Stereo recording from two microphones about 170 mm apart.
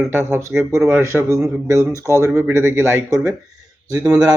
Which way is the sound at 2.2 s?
15° right (ahead or behind).